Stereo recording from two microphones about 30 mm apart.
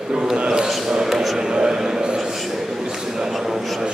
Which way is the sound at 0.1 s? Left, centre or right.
Right.